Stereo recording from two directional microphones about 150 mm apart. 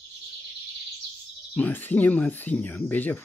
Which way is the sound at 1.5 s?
10° left (ahead or behind).